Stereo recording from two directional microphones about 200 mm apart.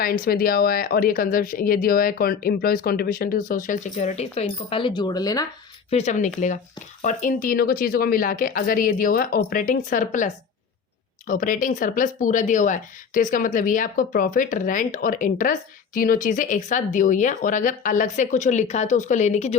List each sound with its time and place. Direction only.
0.0 s speech: 50° left (ahead or behind); by 5.5 s 20° left (ahead or behind)
5.9 s speech: 35° left (ahead or behind)